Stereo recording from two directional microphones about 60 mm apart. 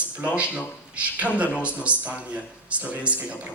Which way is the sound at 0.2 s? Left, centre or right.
Right.